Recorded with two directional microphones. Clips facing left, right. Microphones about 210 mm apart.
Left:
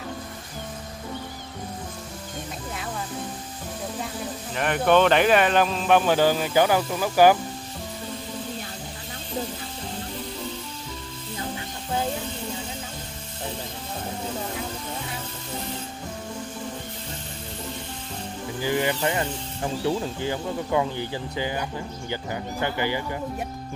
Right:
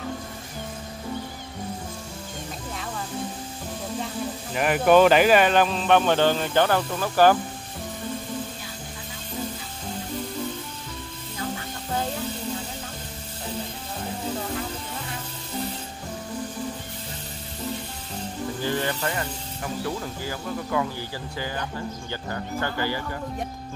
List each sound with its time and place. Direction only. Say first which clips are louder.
4.6 s speech: right 2 dB; 5° right (ahead or behind); by 7.3 s 10° left (ahead or behind)
18.6 s speech: left 4 dB; 15° left (ahead or behind)